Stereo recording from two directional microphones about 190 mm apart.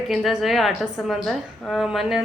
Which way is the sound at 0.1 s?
Centre (ahead or behind).